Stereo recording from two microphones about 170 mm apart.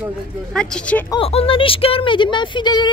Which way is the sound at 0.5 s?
5° left (ahead or behind).